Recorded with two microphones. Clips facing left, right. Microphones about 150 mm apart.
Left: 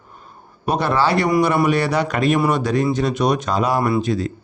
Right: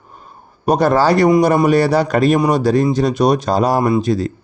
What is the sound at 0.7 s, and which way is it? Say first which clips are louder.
Speech: right 5 dB; 40° right (ahead or behind).